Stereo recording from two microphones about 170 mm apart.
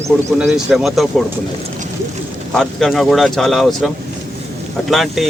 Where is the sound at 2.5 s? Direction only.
Centre (ahead or behind).